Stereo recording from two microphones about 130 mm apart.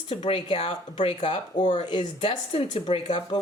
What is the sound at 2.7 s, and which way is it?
Speech, 65° left (ahead or behind).